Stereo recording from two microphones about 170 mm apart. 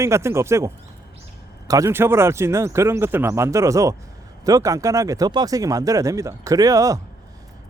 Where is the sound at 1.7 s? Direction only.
15° right (ahead or behind).